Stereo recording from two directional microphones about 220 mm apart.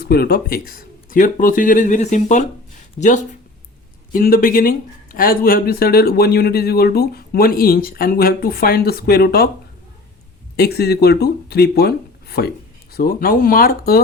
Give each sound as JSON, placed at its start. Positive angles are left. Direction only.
{"t": 0.0, "sound": "speech", "side_deg": 45}
{"t": 4.1, "sound": "speech", "side_deg": 40}
{"t": 10.6, "sound": "speech", "side_deg": 45}